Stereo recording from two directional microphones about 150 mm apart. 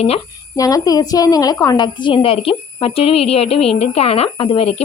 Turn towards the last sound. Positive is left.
turn(degrees=40)  # may be behind; listen again after turning